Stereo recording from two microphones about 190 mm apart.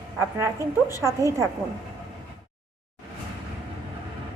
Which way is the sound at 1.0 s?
15° right (ahead or behind).